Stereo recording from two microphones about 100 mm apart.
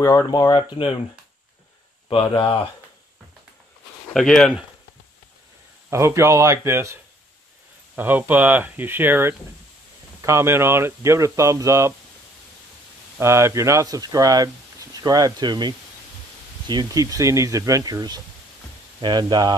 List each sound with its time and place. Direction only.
0.0 s speech: 35° left (ahead or behind)
2.0 s speech: 65° left (ahead or behind)
4.1 s speech: 5° left (ahead or behind)
5.9 s speech: 30° right (ahead or behind)
13.2 s speech: 30° right (ahead or behind); by 17.0 s 45° right (ahead or behind)
17.0 s speech: 35° right (ahead or behind)